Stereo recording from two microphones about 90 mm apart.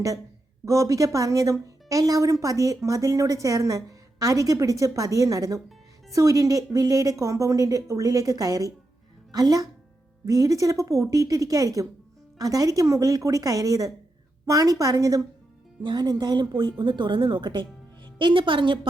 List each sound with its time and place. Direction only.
0.6 s a woman's voice: 35° right (ahead or behind)
15.8 s speech: 55° right (ahead or behind)